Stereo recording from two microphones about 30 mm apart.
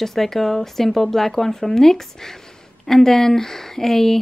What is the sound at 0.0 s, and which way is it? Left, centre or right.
Speech, centre.